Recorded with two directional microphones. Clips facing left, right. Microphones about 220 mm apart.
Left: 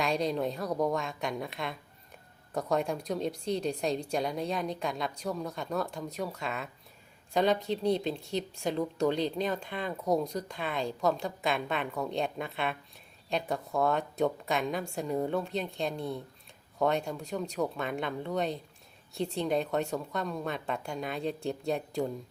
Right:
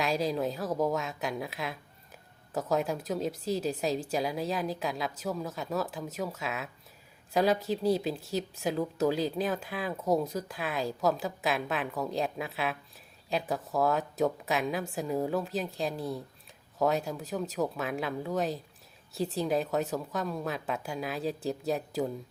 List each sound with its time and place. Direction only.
0.0 s speech: centre (ahead or behind)